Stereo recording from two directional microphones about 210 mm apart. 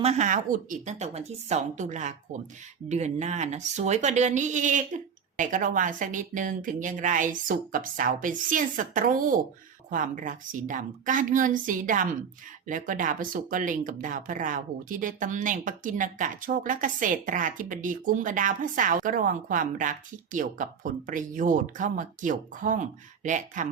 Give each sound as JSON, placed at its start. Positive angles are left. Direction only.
{"t": 0.0, "sound": "speech", "side_deg": -30}